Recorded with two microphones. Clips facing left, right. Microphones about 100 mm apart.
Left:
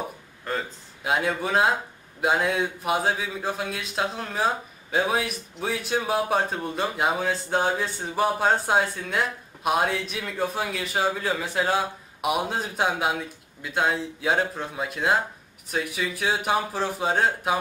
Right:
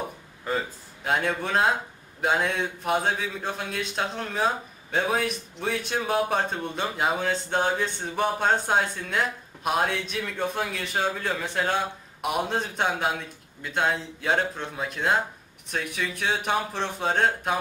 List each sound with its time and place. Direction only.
0.5 s speech: centre (ahead or behind)